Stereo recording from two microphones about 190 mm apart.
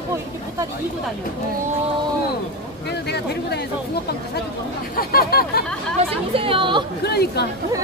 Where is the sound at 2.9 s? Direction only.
60° left (ahead or behind).